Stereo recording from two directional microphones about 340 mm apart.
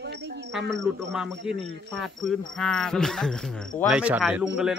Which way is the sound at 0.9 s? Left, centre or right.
Centre.